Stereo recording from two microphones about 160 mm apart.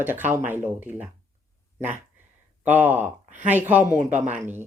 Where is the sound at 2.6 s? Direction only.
10° right (ahead or behind).